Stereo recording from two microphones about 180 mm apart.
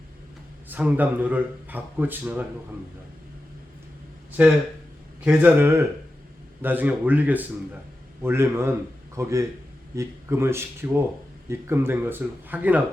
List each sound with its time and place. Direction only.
0.7 s speech: 10° right (ahead or behind)
4.4 s speech: 10° right (ahead or behind)